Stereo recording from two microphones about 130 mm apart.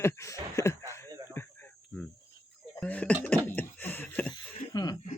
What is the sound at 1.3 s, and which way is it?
Cricket, 15° left (ahead or behind).